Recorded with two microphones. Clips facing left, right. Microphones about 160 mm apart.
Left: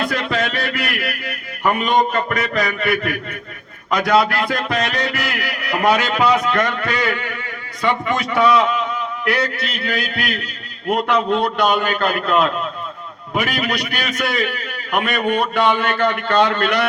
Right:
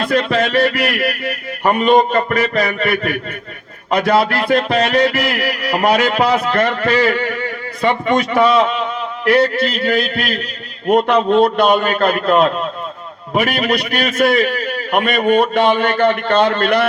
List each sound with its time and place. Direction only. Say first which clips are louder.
0.0 s a man's voice: right 5 dB; 30° right (ahead or behind)